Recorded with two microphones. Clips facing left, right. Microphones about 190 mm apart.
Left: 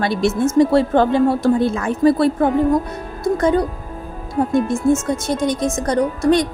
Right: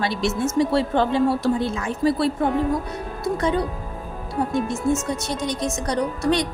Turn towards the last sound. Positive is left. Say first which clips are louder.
# left 6 dB
turn(degrees=50)  # may be behind; listen again after turning